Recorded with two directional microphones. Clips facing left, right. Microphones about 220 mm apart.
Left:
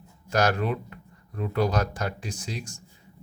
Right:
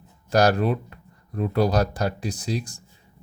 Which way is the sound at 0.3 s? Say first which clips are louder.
Right 5 dB; 35° right (ahead or behind).